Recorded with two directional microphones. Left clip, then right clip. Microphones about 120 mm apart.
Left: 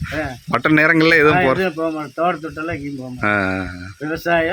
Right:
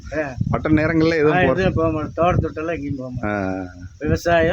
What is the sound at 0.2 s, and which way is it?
Speech, 35° right (ahead or behind).